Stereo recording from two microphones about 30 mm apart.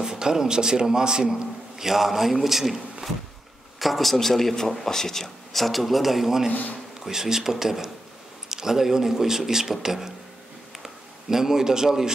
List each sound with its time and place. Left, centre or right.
0.0 s a man's voice: right
1.8 s a man's voice: centre